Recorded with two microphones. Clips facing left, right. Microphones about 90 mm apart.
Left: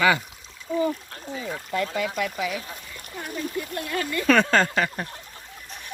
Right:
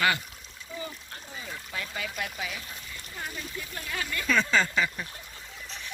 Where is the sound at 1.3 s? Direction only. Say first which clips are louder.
Left 10 dB; 90° left.